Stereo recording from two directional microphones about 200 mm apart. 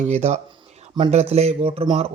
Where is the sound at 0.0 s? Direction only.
35° right (ahead or behind).